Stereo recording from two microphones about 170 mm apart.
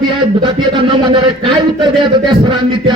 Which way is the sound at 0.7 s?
30° right (ahead or behind).